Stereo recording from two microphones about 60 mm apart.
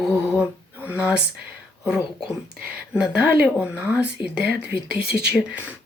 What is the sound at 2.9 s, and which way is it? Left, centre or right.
Speech, centre.